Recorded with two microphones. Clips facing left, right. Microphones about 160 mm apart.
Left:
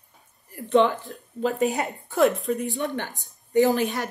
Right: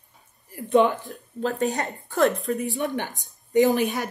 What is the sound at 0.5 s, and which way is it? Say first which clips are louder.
Speech: right 1 dB; 15° right (ahead or behind).